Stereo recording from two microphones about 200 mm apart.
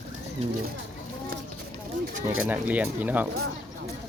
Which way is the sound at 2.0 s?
45° right (ahead or behind).